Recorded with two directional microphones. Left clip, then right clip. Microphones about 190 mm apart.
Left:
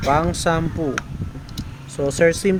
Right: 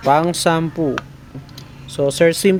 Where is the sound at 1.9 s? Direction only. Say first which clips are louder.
Right 3 dB; 30° right (ahead or behind).